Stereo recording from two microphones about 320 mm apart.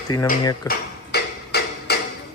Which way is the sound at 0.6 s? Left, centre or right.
Left.